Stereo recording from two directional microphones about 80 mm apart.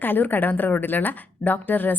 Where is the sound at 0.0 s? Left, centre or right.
Left.